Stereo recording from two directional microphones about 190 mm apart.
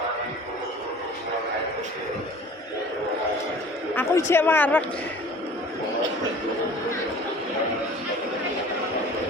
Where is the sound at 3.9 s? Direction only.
10° left (ahead or behind).